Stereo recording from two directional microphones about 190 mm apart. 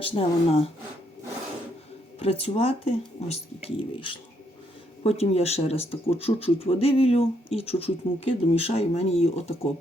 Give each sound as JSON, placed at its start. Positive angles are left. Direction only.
{"t": 0.0, "sound": "speech", "side_deg": 30}
{"t": 2.1, "sound": "speech", "side_deg": 35}